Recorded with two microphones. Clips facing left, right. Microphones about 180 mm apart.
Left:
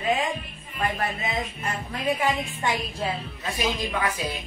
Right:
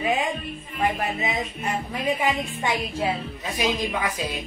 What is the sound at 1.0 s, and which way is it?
Music, 15° right (ahead or behind).